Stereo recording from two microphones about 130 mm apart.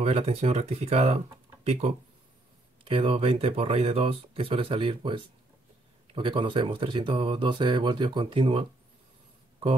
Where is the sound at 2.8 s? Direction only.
40° right (ahead or behind).